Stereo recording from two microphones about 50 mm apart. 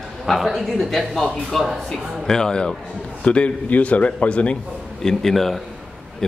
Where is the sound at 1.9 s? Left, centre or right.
Centre.